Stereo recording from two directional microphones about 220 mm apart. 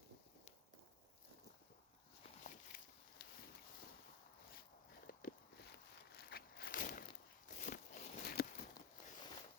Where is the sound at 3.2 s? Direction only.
50° left (ahead or behind).